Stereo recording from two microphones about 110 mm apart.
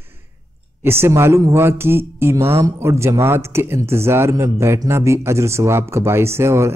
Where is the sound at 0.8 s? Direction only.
20° right (ahead or behind).